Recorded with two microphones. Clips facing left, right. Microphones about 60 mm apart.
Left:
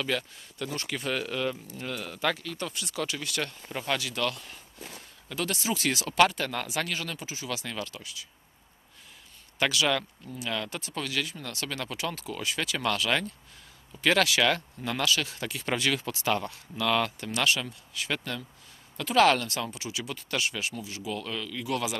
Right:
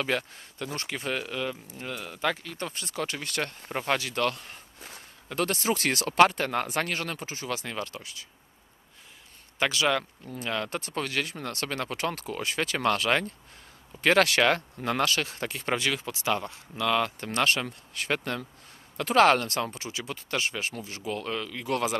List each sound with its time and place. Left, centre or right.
0.0 s speech: right
0.7 s speech: right
2.3 s speech: right
6.1 s speech: right
9.6 s speech: right
10.7 s speech: right
16.8 s speech: centre
17.2 s speech: right
18.1 s speech: right